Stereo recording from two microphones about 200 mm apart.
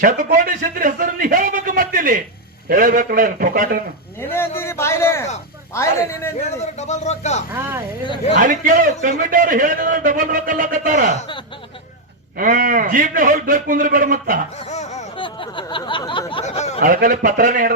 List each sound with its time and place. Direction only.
0.0 s a man's voice: 40° right (ahead or behind)
4.2 s a man's voice: 10° left (ahead or behind)
6.7 s speech: 35° left (ahead or behind)
8.4 s a man's voice: 40° right (ahead or behind)
12.4 s a man's voice: 45° right (ahead or behind)
14.6 s a sound: 35° left (ahead or behind)
16.8 s a man's voice: 45° right (ahead or behind)